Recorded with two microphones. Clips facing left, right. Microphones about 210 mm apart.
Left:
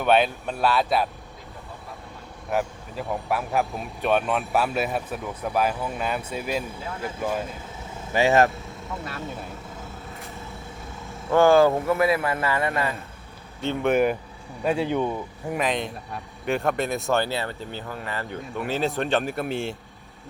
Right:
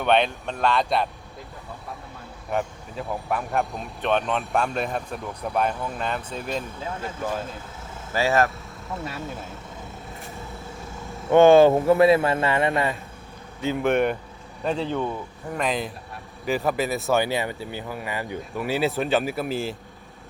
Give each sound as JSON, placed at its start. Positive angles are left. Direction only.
{"t": 0.0, "sound": "speech", "side_deg": 5}
{"t": 2.5, "sound": "a man's voice", "side_deg": 5}
{"t": 11.3, "sound": "a man's voice", "side_deg": -20}
{"t": 13.6, "sound": "a man's voice", "side_deg": 0}
{"t": 15.5, "sound": "speech", "side_deg": 0}
{"t": 17.2, "sound": "speech", "side_deg": -15}